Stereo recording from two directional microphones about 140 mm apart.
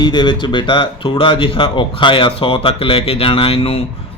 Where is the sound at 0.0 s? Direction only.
30° left (ahead or behind).